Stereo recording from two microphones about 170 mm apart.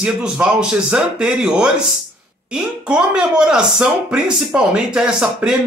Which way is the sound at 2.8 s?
5° right (ahead or behind).